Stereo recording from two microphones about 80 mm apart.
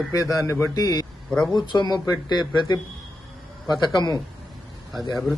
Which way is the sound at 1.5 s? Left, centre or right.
Left.